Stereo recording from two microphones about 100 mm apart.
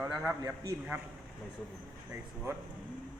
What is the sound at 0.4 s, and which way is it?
Speech, 40° right (ahead or behind).